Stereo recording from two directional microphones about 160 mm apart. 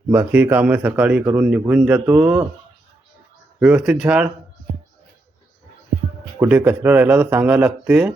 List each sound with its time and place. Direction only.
0.1 s speech: 10° right (ahead or behind)
1.2 s speech: 20° right (ahead or behind)
3.6 s speech: 5° right (ahead or behind)
6.4 s speech: 10° right (ahead or behind)